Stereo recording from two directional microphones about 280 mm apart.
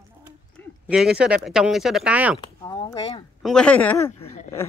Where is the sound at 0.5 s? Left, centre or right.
Centre.